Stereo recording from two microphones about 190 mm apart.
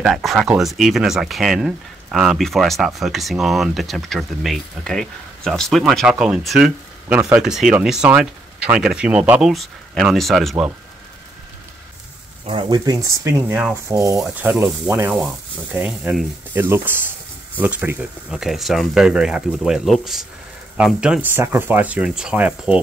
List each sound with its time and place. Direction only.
0.0 s speech: centre (ahead or behind)
12.4 s speech: 25° right (ahead or behind); by 22.8 s 5° right (ahead or behind)